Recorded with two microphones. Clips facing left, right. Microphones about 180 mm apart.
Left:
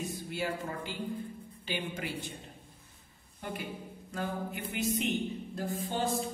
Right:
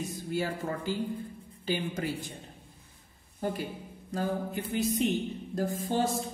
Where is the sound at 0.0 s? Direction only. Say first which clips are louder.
Right 3 dB; 40° right (ahead or behind).